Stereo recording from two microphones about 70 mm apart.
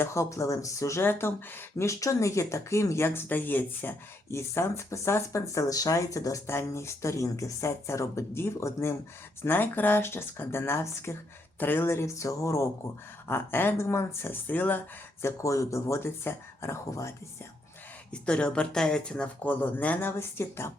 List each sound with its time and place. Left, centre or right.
0.0 s speech: left
1.2 s speech: left
1.8 s speech: left
9.4 s speech: left
13.2 s speech: left
13.7 s speech: left
15.2 s speech: left
18.1 s speech: centre; by 20.7 s left